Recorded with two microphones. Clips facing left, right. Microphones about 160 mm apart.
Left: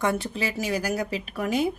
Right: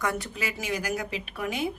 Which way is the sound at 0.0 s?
30° left (ahead or behind).